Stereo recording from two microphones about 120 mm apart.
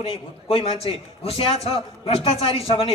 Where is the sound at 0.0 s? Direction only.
50° left (ahead or behind).